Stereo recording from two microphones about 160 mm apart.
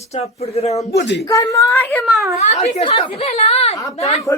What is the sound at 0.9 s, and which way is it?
Speech, 90° left.